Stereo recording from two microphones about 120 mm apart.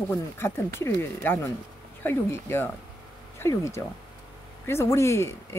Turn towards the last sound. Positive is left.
turn(degrees=25)  # may be behind; listen again after turning